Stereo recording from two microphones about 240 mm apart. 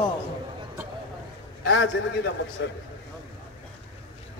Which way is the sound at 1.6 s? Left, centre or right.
Left.